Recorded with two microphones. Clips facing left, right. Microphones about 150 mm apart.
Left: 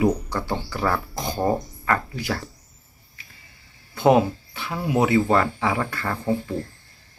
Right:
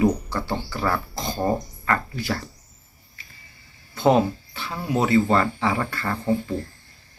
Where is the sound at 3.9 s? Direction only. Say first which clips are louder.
Left 1 dB; 15° left (ahead or behind).